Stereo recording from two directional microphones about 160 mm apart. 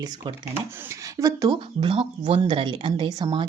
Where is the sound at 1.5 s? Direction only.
35° right (ahead or behind).